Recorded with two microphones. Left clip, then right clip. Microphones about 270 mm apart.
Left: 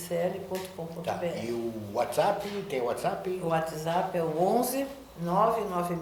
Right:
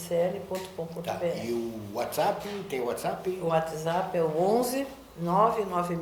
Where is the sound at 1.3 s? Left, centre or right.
Left.